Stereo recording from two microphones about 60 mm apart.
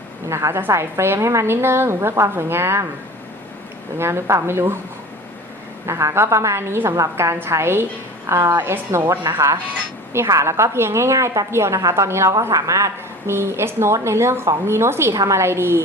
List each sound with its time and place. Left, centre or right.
0.3 s a woman's voice: right
3.9 s a woman's voice: right
5.8 s a woman's voice: right
7.3 s a woman's voice: right
11.8 s a woman's voice: right
12.3 s a woman's voice: right
15.1 s a woman's voice: right